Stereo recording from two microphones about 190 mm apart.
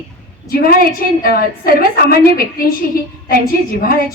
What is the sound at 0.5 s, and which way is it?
A woman's voice, 50° left (ahead or behind).